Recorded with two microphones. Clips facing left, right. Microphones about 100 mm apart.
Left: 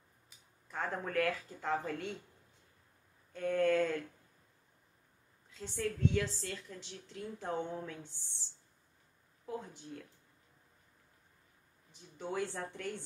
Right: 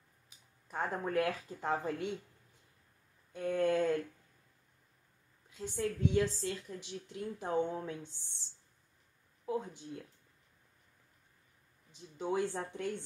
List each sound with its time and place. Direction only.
0.7 s a woman's voice: 20° right (ahead or behind)
3.3 s a woman's voice: 15° right (ahead or behind)
5.5 s a woman's voice: 15° right (ahead or behind)
9.6 s a woman's voice: 20° right (ahead or behind)
11.9 s a woman's voice: 20° right (ahead or behind)